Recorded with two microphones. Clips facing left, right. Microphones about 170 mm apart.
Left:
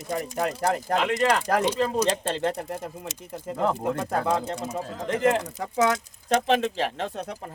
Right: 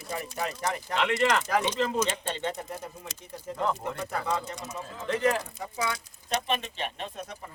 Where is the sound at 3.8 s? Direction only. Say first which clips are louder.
Left 6 dB; 65° left (ahead or behind).